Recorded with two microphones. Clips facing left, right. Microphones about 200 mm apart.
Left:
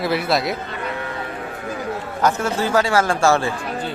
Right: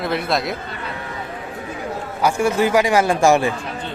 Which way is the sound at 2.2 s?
10° right (ahead or behind).